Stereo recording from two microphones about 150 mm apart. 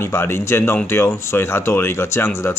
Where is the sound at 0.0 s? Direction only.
15° left (ahead or behind).